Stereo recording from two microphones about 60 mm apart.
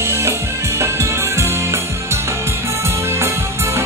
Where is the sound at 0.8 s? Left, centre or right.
Right.